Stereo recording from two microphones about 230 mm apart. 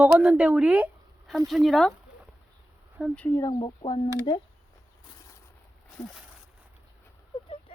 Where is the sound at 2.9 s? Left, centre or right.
Centre.